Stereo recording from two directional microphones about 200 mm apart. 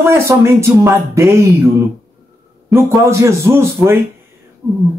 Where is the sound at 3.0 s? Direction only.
15° right (ahead or behind).